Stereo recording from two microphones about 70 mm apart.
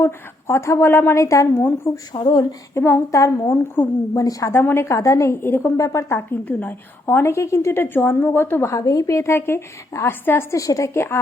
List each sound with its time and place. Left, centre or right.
0.0 s a woman's voice: left
1.5 s a woman's voice: left
2.2 s speech: left
2.7 s a woman's voice: left
3.1 s a woman's voice: left
4.6 s a woman's voice: left
4.9 s a woman's voice: left
5.7 s a woman's voice: left
6.4 s a woman's voice: left
7.8 s a woman's voice: left
8.7 s a woman's voice: left
10.5 s a woman's voice: left